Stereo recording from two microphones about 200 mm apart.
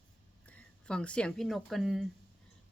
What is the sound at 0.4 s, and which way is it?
A woman's voice, 5° left (ahead or behind).